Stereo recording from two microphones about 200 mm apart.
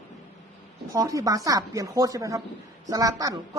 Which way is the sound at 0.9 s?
15° right (ahead or behind).